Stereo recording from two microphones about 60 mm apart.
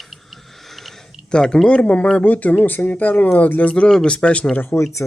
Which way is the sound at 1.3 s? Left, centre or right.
Centre.